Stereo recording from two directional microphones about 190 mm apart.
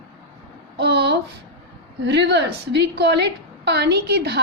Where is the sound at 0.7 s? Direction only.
60° right (ahead or behind).